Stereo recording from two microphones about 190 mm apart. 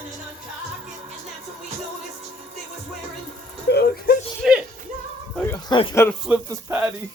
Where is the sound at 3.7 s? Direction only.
60° left (ahead or behind).